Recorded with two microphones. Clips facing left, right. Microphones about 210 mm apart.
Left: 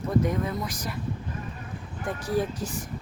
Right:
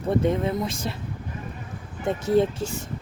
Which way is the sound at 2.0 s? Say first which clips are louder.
Right 7 dB; 25° right (ahead or behind).